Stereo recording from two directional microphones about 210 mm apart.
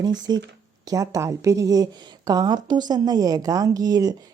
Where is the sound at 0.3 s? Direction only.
20° right (ahead or behind).